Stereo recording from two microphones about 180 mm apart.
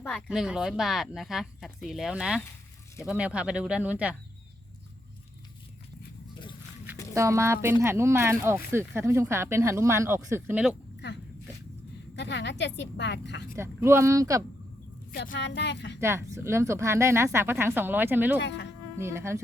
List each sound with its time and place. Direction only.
0.0 s speech: centre (ahead or behind)
7.1 s speech: 15° right (ahead or behind)
12.1 s a woman's voice: 75° left (ahead or behind)
13.6 s speech: 15° right (ahead or behind)
15.4 s a woman's voice: 75° left (ahead or behind)
16.0 s speech: 15° right (ahead or behind)
18.3 s a woman's voice: 75° left (ahead or behind)
18.9 s speech: 15° right (ahead or behind)